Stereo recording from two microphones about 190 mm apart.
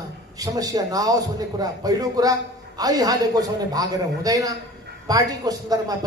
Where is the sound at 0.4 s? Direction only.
20° right (ahead or behind).